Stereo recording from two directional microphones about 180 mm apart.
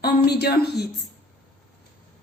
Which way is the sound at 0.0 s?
65° left (ahead or behind).